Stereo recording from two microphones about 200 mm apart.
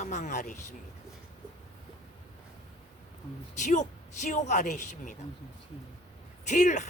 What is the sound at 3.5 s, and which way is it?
Speech, 40° left (ahead or behind).